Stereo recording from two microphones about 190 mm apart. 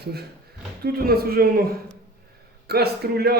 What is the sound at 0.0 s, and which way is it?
A man's voice, 60° right (ahead or behind).